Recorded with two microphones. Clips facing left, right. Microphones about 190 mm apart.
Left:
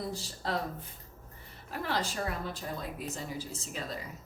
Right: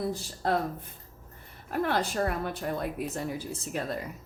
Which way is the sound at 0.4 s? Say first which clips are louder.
Right 6 dB; 55° right (ahead or behind).